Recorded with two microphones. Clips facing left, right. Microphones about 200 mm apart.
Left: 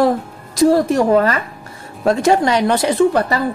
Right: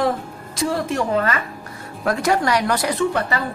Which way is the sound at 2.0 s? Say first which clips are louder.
Left 6 dB; 25° left (ahead or behind).